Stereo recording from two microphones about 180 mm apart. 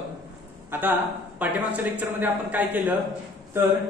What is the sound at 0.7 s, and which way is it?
A man's voice, 10° right (ahead or behind).